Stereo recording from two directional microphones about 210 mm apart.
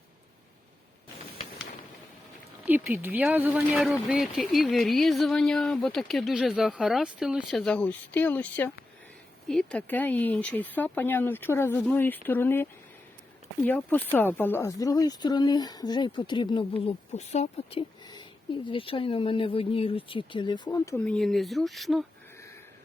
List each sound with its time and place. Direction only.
2.6 s speech: 10° right (ahead or behind); by 12.6 s 10° left (ahead or behind)
13.7 s speech: 10° left (ahead or behind)